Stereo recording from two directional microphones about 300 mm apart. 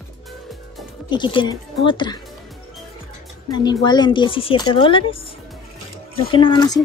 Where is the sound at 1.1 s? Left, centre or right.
Centre.